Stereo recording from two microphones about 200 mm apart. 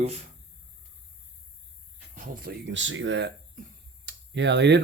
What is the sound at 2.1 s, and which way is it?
Speech, 45° right (ahead or behind).